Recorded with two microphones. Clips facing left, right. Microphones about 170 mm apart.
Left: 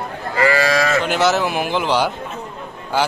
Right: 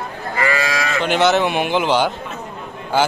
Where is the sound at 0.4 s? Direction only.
35° left (ahead or behind).